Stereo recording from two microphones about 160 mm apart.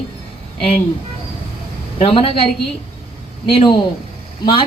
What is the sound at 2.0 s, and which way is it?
A woman's voice, 35° left (ahead or behind).